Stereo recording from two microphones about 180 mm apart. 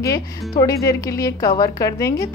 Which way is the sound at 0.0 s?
20° left (ahead or behind).